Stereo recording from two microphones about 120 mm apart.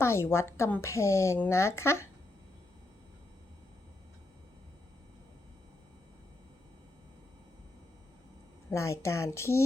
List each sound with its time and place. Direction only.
0.0 s speech: 20° left (ahead or behind)
8.7 s speech: 25° left (ahead or behind)